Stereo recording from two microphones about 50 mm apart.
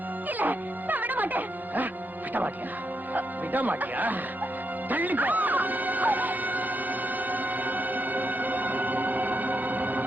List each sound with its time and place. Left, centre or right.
0.3 s speech: right
3.2 s speech: right
7.3 s music: right